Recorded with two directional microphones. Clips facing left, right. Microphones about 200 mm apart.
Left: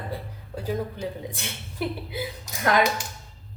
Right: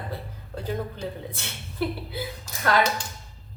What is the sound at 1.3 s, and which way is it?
A woman's voice, 15° left (ahead or behind).